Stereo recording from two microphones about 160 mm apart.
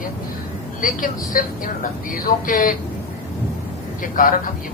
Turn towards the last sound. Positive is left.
turn(degrees=60)  # may be behind; listen again after turning